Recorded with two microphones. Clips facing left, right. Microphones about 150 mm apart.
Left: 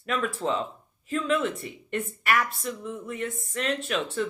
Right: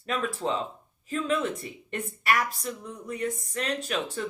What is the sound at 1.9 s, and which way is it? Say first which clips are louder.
Speech: left 1 dB; 40° right (ahead or behind).